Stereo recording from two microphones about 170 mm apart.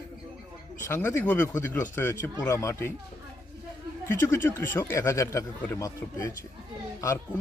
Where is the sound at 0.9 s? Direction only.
15° left (ahead or behind).